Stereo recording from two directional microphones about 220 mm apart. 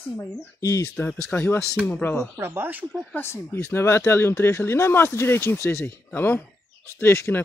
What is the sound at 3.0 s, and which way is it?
Speech, 10° left (ahead or behind).